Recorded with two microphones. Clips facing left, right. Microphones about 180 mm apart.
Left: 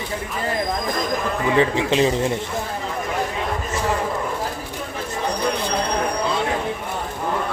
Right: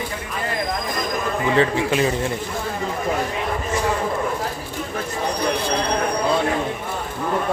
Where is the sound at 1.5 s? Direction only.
20° left (ahead or behind).